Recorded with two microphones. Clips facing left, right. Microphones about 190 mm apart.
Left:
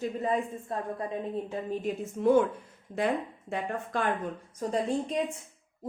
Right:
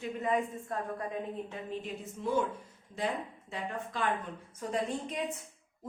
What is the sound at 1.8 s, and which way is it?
A woman's voice, 55° left (ahead or behind).